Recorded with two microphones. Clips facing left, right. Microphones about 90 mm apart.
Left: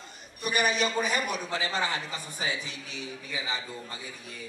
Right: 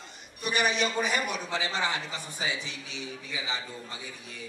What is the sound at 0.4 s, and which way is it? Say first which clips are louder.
A man's voice: even; 45° left (ahead or behind).